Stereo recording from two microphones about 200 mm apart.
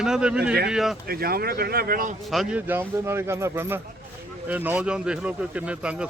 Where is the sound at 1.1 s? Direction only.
50° right (ahead or behind).